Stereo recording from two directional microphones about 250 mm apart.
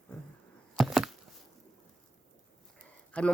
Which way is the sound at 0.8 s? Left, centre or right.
Centre.